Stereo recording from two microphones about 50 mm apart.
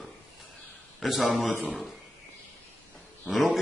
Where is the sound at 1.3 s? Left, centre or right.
Centre.